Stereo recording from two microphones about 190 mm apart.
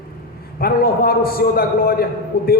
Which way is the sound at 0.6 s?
55° left (ahead or behind).